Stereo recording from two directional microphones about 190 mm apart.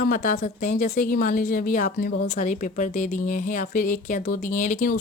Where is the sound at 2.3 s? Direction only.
40° left (ahead or behind).